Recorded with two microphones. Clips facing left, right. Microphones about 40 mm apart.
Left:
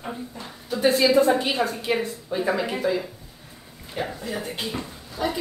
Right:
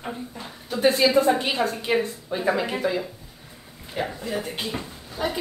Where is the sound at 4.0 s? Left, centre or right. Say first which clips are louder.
Right 1 dB; centre.